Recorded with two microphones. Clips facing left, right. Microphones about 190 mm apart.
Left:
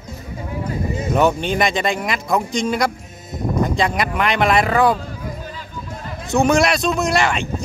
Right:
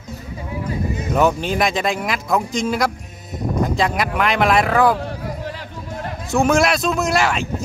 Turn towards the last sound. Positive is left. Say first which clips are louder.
# even
turn(degrees=-5)  # may be behind; listen again after turning